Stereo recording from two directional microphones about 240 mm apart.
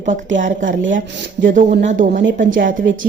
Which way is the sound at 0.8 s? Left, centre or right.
Right.